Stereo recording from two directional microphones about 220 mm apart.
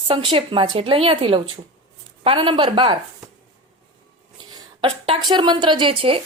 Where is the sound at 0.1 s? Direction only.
25° right (ahead or behind).